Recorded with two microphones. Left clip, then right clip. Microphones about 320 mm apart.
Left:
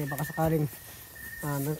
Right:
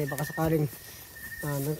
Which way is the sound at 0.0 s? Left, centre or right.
Centre.